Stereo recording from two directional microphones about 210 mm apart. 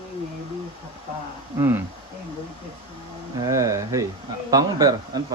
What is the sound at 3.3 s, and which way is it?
Speech, 15° right (ahead or behind).